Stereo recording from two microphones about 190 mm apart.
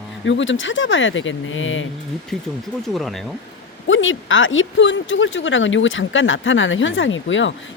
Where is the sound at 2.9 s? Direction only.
Centre (ahead or behind).